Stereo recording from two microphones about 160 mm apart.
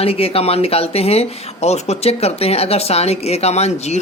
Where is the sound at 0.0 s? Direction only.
35° left (ahead or behind).